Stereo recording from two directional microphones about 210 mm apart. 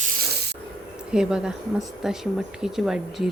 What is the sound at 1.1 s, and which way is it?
A woman's voice, 5° right (ahead or behind).